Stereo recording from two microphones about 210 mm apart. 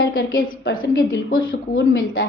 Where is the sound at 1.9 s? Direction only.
70° left (ahead or behind).